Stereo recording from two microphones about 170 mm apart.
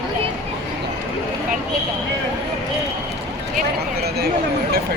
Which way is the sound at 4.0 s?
65° right (ahead or behind).